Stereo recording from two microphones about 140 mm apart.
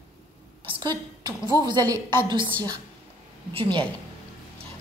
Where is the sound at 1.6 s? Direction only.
30° right (ahead or behind).